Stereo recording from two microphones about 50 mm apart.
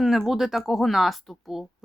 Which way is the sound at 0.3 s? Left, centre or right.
Centre.